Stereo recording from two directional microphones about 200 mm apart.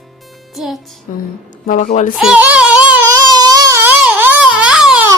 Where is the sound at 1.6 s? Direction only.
40° left (ahead or behind).